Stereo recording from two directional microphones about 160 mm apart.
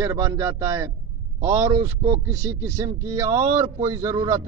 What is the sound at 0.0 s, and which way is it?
A man's voice, 20° right (ahead or behind).